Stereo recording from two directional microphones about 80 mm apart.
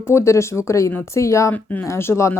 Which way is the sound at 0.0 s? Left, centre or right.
Left.